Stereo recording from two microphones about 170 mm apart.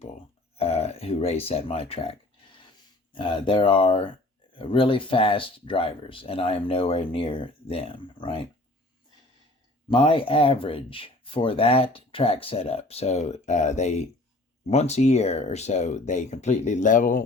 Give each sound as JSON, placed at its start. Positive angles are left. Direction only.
{"t": 0.0, "sound": "speech", "side_deg": 40}
{"t": 9.9, "sound": "speech", "side_deg": 30}